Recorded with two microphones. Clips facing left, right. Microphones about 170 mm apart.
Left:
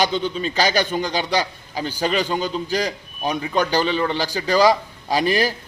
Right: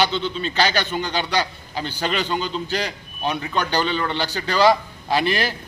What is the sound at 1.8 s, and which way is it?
Speech, 10° left (ahead or behind).